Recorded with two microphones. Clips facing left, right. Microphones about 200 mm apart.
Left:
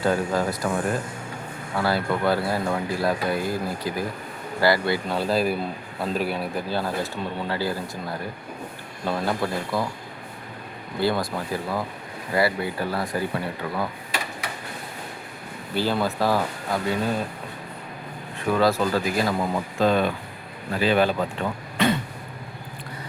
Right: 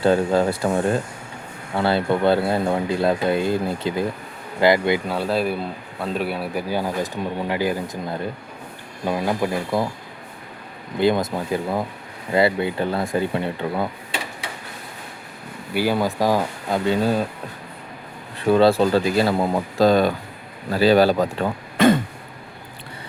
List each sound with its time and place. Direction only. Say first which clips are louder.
0.0 s speech: right 5 dB; 30° right (ahead or behind)
5.0 s speech: right 1 dB; centre (ahead or behind)
10.9 s speech: right 5 dB; 20° right (ahead or behind)
15.7 s speech: right 3 dB; 10° right (ahead or behind)
16.7 s speech: right 5 dB; 25° right (ahead or behind)
18.4 s speech: right 6 dB; 30° right (ahead or behind); by 22.0 s 45° right (ahead or behind)